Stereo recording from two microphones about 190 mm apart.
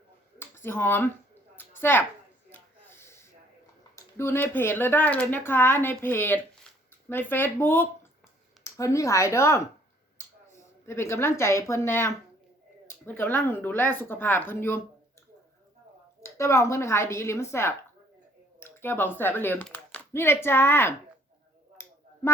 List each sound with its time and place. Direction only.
0.3 s a sound: 10° left (ahead or behind)
2.5 s snort: 10° left (ahead or behind)
3.9 s speech: 15° left (ahead or behind)
10.6 s speech: 15° left (ahead or behind)
16.2 s speech: 15° left (ahead or behind)